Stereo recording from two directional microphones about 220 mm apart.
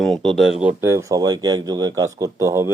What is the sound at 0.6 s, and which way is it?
Speech, 10° right (ahead or behind).